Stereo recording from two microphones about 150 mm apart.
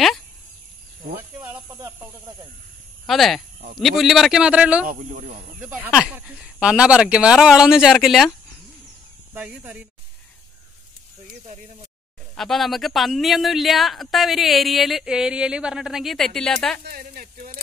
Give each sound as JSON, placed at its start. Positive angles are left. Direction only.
{"t": 1.7, "sound": "snake", "side_deg": -25}
{"t": 3.1, "sound": "speech", "side_deg": 0}
{"t": 9.3, "sound": "speech", "side_deg": -5}
{"t": 11.4, "sound": "speech", "side_deg": -45}
{"t": 12.4, "sound": "speech", "side_deg": 0}
{"t": 16.8, "sound": "speech", "side_deg": -75}